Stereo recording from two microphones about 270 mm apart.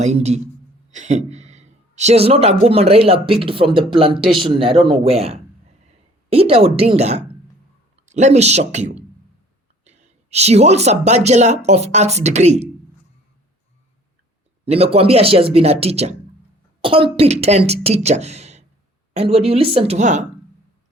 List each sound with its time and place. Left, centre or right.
0.0 s speech: right
14.6 s speech: right